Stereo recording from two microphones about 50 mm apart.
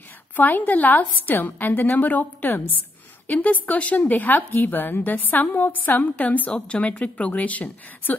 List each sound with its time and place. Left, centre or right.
0.4 s a woman's voice: left